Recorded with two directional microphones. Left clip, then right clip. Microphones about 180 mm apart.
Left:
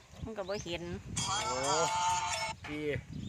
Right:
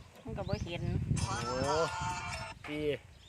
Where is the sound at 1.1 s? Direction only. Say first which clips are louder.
Left 3 dB; 40° left (ahead or behind).